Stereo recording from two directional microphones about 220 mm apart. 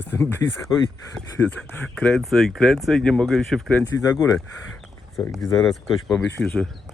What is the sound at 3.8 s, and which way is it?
Speech, 15° left (ahead or behind).